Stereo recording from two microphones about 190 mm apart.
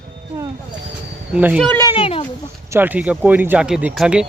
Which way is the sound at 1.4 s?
10° right (ahead or behind).